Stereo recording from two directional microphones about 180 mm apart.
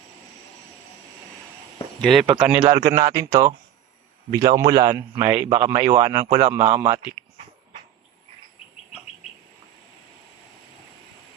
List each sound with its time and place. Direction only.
2.0 s speech: centre (ahead or behind)
2.6 s a man's voice: 20° right (ahead or behind)